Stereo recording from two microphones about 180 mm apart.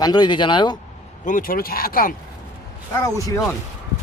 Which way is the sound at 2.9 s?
20° left (ahead or behind).